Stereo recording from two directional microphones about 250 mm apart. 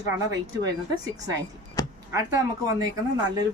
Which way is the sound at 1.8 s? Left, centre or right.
Centre.